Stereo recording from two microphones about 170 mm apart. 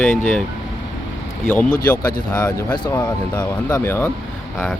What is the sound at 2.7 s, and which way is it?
Speech, 20° left (ahead or behind).